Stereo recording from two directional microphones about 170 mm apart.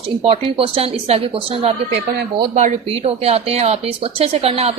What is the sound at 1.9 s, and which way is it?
Speech, 70° right (ahead or behind).